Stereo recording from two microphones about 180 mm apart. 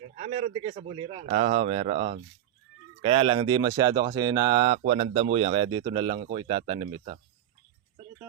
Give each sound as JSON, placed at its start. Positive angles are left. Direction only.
{"t": 0.2, "sound": "speech", "side_deg": -35}